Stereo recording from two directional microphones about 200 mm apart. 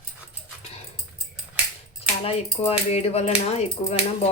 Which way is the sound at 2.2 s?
30° left (ahead or behind).